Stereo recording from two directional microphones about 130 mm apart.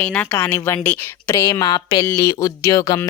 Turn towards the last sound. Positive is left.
turn(degrees=30)  # may be behind; listen again after turning